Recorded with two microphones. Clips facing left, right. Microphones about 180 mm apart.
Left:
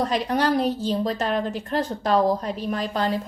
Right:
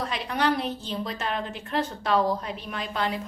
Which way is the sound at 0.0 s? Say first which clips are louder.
Left 5 dB; 40° left (ahead or behind).